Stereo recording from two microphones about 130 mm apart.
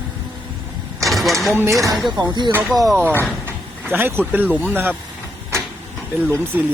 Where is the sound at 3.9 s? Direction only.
15° right (ahead or behind).